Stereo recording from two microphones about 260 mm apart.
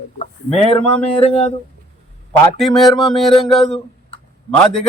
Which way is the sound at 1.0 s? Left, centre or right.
Left.